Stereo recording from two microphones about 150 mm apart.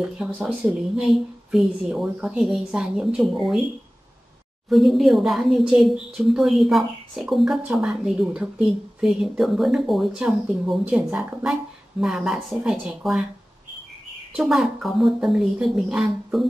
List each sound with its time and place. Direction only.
0.2 s speech: 5° right (ahead or behind)
4.6 s speech: centre (ahead or behind)
14.3 s speech: centre (ahead or behind)